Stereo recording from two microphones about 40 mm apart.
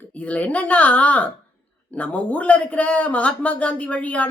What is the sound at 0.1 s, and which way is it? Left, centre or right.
A man's voice, left.